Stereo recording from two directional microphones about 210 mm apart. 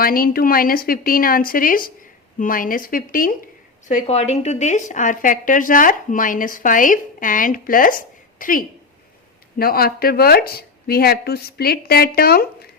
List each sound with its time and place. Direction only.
0.0 s a woman's voice: 45° left (ahead or behind)